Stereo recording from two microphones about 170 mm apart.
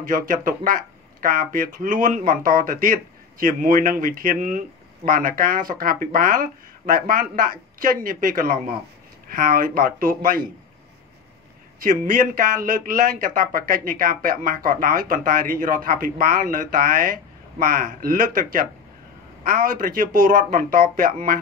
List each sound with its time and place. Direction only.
0.0 s speech: 55° right (ahead or behind)
11.8 s speech: 50° right (ahead or behind)